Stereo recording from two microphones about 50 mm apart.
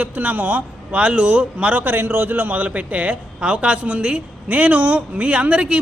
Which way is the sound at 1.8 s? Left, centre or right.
Right.